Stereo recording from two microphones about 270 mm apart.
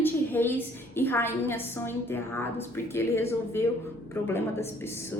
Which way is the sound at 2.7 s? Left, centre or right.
Centre.